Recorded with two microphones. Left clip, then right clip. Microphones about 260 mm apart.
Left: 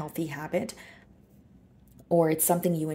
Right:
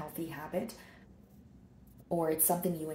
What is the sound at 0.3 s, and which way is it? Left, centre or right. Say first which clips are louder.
Speech: left 8 dB; left.